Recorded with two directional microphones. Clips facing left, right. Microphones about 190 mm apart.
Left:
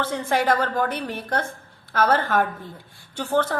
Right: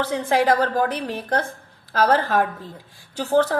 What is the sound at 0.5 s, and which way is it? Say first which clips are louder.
A woman's voice: right 3 dB; 35° right (ahead or behind).